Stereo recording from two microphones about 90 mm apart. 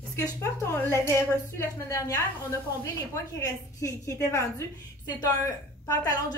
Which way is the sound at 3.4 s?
40° left (ahead or behind).